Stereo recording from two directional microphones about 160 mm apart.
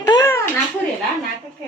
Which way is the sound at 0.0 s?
20° left (ahead or behind).